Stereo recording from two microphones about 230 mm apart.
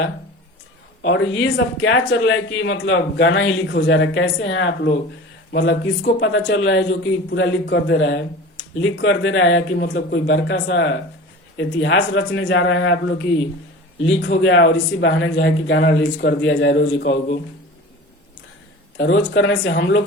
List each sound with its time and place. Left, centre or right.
1.0 s speech: left
14.0 s speech: left
18.9 s speech: left